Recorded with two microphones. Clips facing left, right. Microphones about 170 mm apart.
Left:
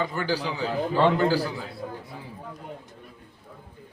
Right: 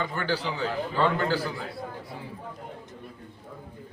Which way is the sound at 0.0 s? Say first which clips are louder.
Left 2 dB; 10° left (ahead or behind).